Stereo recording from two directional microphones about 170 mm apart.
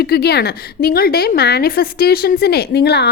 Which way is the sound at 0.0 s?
70° left (ahead or behind).